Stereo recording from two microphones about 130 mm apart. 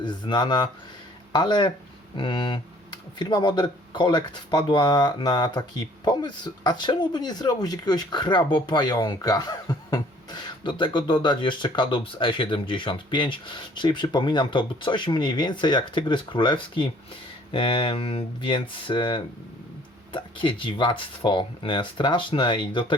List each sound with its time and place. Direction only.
0.0 s speech: 35° left (ahead or behind)